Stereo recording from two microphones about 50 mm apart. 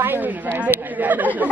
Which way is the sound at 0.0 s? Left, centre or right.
Right.